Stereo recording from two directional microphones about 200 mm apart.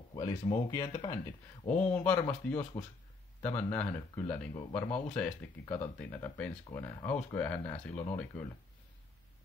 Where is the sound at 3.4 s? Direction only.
10° left (ahead or behind).